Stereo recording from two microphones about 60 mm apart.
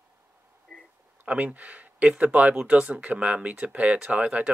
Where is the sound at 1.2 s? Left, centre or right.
Right.